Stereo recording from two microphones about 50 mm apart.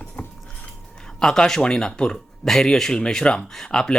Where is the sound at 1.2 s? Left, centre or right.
Centre.